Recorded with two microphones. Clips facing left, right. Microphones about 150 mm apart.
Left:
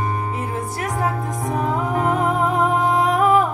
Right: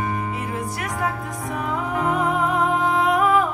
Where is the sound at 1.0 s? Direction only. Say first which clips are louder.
Left 3 dB; 35° left (ahead or behind).